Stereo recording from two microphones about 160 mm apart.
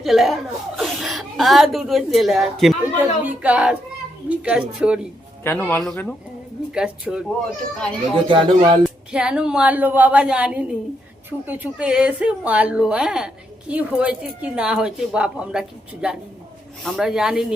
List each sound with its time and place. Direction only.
0.0 s a woman's voice: centre (ahead or behind)
2.8 s a sound: 10° right (ahead or behind)
4.3 s a woman's voice: 5° right (ahead or behind)
5.4 s a man's voice: 15° left (ahead or behind); by 7.3 s 5° right (ahead or behind)
8.3 s speech: 30° right (ahead or behind)
9.1 s a woman's voice: 5° right (ahead or behind)